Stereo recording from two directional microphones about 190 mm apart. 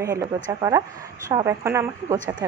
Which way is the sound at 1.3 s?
15° right (ahead or behind).